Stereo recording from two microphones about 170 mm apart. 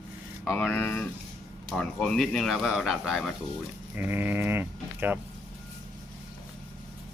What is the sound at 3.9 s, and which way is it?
Speech, 10° right (ahead or behind).